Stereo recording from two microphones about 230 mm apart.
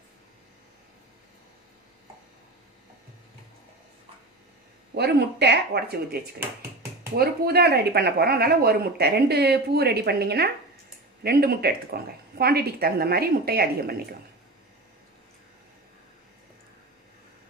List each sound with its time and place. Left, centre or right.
4.9 s speech: right
7.2 s speech: right